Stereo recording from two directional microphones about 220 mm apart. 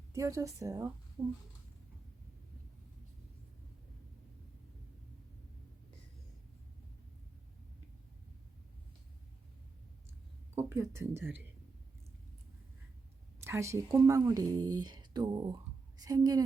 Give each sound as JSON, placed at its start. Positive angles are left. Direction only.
{"t": 0.1, "sound": "a woman's voice", "side_deg": -15}
{"t": 10.5, "sound": "speech", "side_deg": -10}
{"t": 13.4, "sound": "speech", "side_deg": -15}